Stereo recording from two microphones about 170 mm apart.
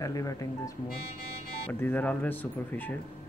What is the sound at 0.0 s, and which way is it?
Speech, 20° left (ahead or behind).